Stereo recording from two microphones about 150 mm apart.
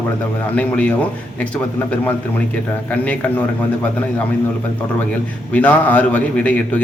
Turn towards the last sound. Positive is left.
turn(degrees=10)  # may be behind; listen again after turning